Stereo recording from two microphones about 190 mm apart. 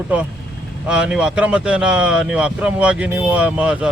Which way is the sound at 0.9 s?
5° right (ahead or behind).